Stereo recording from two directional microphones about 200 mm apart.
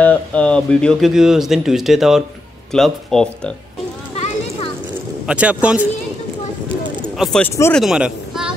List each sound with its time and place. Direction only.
0.0 s speech: 5° left (ahead or behind)
4.2 s children playing: 30° left (ahead or behind)
5.2 s speech: 5° right (ahead or behind)
7.2 s speech: 5° left (ahead or behind)